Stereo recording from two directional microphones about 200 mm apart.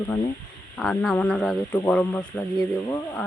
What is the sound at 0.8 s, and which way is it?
Speech, centre (ahead or behind).